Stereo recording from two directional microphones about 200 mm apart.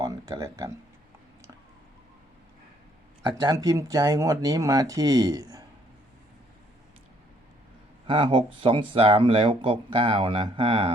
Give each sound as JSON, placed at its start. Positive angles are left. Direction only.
{"t": 0.0, "sound": "a sound", "side_deg": -15}
{"t": 3.2, "sound": "speech", "side_deg": -20}
{"t": 8.0, "sound": "speech", "side_deg": -25}